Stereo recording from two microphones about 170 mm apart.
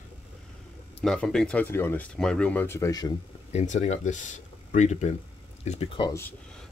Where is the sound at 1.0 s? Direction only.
5° left (ahead or behind); by 3.1 s 20° left (ahead or behind).